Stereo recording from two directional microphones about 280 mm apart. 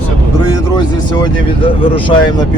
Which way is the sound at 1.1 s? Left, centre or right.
Centre.